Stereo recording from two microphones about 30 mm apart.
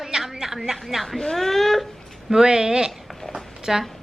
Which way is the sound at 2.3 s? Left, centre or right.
Right.